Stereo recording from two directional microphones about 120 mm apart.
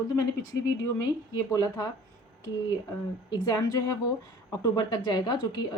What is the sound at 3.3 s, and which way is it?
A woman's voice, 30° left (ahead or behind).